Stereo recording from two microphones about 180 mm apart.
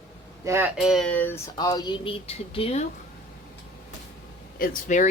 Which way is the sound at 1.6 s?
20° left (ahead or behind).